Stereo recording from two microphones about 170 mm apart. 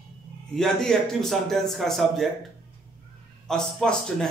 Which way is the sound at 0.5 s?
5° left (ahead or behind).